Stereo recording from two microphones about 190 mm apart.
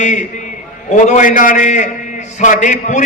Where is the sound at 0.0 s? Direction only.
40° left (ahead or behind).